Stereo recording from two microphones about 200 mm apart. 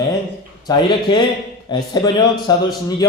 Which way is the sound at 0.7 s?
20° left (ahead or behind).